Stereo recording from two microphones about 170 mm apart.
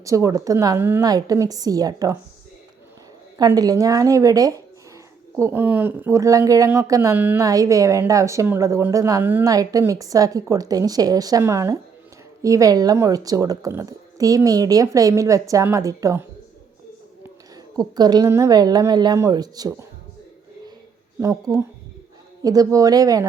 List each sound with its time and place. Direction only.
0.0 s speech: 20° right (ahead or behind)
3.3 s speech: 20° right (ahead or behind)
17.7 s speech: 25° right (ahead or behind)
21.2 s speech: 15° right (ahead or behind)